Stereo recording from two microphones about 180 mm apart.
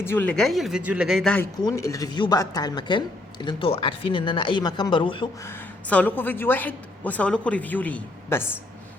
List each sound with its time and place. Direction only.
0.0 s speech: 10° left (ahead or behind)
1.6 s speech: 15° left (ahead or behind)
5.4 s a woman's voice: 15° left (ahead or behind)